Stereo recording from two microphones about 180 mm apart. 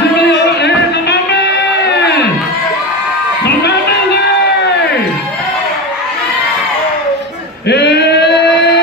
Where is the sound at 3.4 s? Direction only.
65° left (ahead or behind).